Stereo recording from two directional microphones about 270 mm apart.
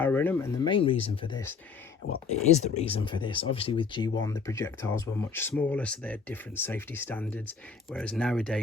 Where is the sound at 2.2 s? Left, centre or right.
Left.